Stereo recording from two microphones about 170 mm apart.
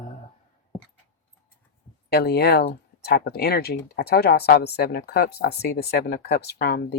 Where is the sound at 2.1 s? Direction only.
70° left (ahead or behind).